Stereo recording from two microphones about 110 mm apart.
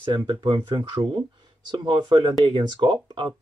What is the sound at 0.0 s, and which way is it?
Speech, 40° right (ahead or behind).